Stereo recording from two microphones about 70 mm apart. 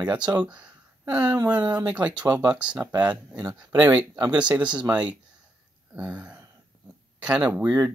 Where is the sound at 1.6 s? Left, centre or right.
Right.